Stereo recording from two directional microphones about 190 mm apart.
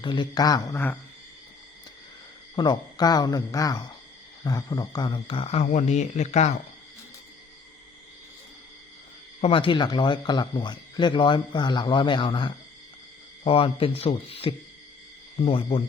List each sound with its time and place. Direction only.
0.0 s speech: 25° left (ahead or behind)
2.6 s speech: 20° left (ahead or behind)
9.4 s speech: 30° left (ahead or behind)